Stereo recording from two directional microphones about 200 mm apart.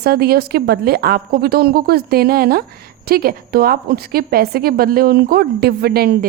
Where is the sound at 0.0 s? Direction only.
50° right (ahead or behind).